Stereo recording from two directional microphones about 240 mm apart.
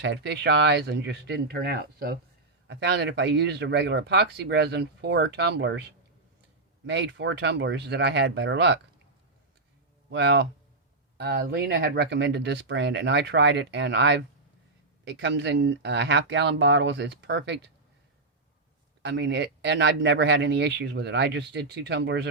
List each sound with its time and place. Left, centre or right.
0.0 s speech: right
6.8 s speech: right
10.1 s speech: right
19.0 s speech: right